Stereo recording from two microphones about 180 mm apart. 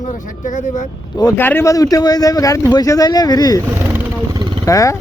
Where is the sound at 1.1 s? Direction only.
15° left (ahead or behind).